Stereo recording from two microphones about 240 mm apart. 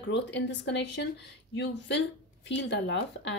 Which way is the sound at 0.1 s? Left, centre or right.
Left.